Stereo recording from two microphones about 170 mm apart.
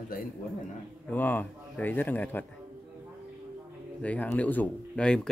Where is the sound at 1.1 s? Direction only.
10° left (ahead or behind).